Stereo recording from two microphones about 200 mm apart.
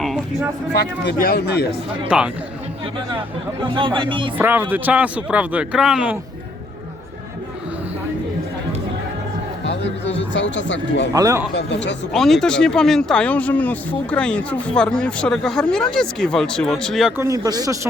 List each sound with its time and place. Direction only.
0.0 s a sound: centre (ahead or behind)
0.7 s speech: 55° left (ahead or behind)
2.0 s speech: 5° right (ahead or behind)
3.1 s speech: 25° right (ahead or behind)
4.4 s speech: 10° right (ahead or behind)
10.2 s speech: 65° left (ahead or behind)
11.1 s speech: 15° right (ahead or behind)
11.5 s speech: 60° left (ahead or behind)
12.1 s speech: centre (ahead or behind)
17.2 s speech: 15° right (ahead or behind)